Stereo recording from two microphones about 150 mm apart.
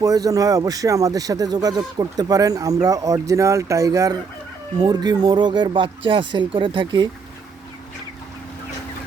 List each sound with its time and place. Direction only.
0.0 s speech: 25° right (ahead or behind)